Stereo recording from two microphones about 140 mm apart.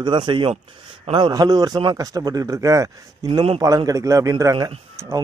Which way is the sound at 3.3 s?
40° right (ahead or behind).